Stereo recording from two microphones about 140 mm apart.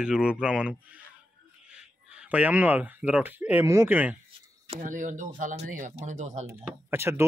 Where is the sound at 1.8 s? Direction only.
10° right (ahead or behind).